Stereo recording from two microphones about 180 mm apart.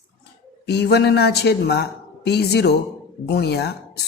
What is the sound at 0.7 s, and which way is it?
A woman's voice, 65° left (ahead or behind).